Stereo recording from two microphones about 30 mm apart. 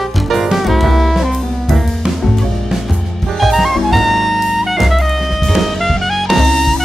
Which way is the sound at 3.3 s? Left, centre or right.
Centre.